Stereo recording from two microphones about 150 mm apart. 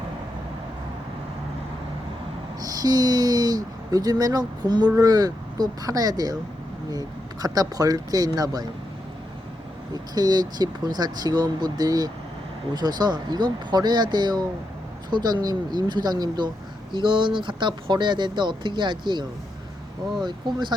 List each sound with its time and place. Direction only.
2.6 s speech: 25° right (ahead or behind)
7.4 s speech: 25° right (ahead or behind)
9.9 s speech: 25° right (ahead or behind)
20.2 s speech: 30° right (ahead or behind)